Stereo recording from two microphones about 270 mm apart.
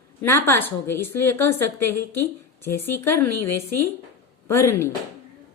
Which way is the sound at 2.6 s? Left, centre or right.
Centre.